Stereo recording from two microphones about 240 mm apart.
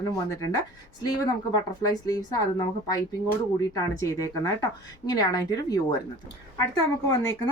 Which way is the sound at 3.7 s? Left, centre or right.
Centre.